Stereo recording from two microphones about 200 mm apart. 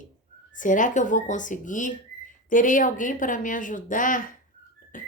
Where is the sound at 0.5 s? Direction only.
40° left (ahead or behind).